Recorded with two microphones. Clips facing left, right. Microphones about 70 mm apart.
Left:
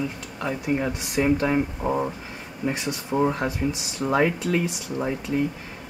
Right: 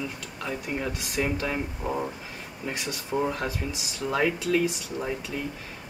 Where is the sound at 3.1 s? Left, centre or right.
Left.